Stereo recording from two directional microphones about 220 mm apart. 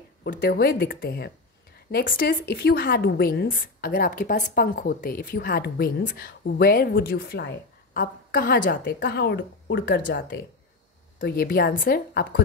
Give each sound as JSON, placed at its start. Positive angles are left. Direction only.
{"t": 0.2, "sound": "a woman's voice", "side_deg": 45}